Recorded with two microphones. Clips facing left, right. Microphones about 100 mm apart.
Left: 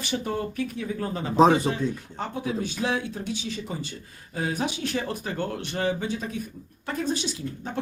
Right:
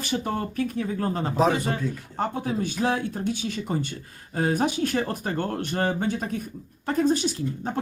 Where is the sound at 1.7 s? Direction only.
45° right (ahead or behind).